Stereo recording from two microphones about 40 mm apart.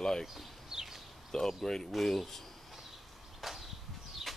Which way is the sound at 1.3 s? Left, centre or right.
Centre.